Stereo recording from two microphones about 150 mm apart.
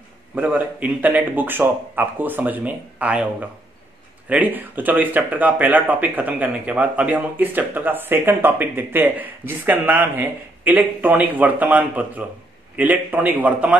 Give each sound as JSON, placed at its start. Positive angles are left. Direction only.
{"t": 0.3, "sound": "speech", "side_deg": -10}